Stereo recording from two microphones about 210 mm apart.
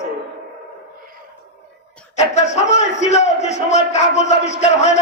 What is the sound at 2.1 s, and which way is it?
A man's voice, 30° left (ahead or behind).